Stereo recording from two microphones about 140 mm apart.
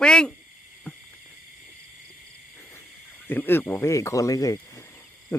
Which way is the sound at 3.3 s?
15° left (ahead or behind).